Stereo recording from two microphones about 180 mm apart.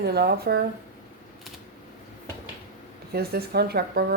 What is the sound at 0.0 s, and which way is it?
Speech, 65° right (ahead or behind).